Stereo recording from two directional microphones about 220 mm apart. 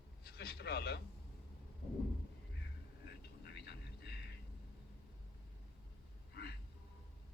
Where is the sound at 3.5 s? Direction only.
45° left (ahead or behind).